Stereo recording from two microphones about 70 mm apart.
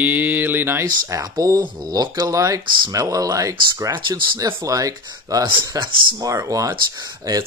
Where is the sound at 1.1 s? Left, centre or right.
Right.